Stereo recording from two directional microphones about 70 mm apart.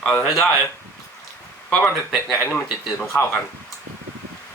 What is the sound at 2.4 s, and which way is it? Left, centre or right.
Speech, left.